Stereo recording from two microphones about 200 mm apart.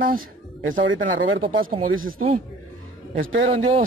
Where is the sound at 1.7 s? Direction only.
25° right (ahead or behind).